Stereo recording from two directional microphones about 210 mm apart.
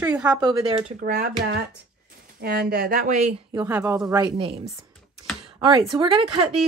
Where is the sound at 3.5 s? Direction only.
10° right (ahead or behind).